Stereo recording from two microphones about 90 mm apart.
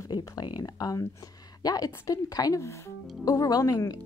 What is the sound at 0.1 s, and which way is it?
A woman's voice, 50° left (ahead or behind).